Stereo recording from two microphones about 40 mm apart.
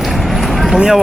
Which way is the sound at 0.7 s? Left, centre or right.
Centre.